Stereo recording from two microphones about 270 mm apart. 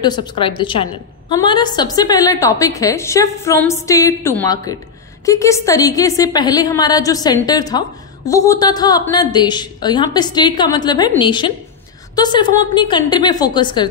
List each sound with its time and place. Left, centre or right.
0.0 s a woman's voice: centre